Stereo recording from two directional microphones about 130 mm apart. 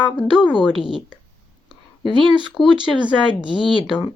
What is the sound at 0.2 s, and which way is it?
Speech, 40° left (ahead or behind).